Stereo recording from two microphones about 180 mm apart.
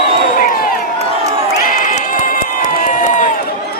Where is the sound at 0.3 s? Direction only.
55° left (ahead or behind).